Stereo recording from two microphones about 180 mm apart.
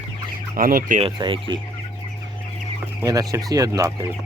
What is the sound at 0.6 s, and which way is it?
Speech, 50° right (ahead or behind).